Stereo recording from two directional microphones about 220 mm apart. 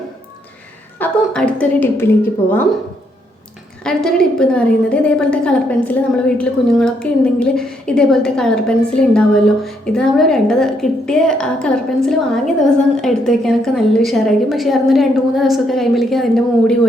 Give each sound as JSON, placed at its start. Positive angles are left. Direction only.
{"t": 0.9, "sound": "a woman's voice", "side_deg": 5}
{"t": 3.8, "sound": "a woman's voice", "side_deg": 5}